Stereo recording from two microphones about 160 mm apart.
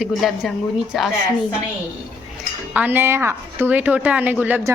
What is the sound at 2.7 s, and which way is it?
A woman's voice, 10° right (ahead or behind).